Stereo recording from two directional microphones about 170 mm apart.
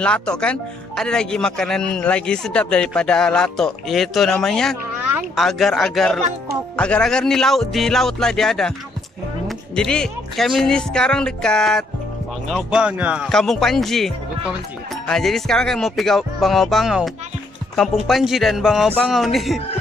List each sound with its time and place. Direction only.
0.0 s speech: 5° left (ahead or behind)
9.8 s speech: 5° left (ahead or behind)